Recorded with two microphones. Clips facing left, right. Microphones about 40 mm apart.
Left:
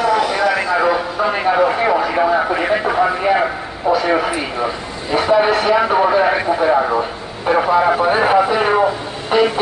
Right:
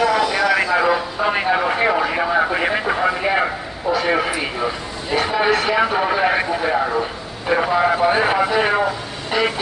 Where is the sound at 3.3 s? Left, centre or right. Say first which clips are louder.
Left 4 dB; centre.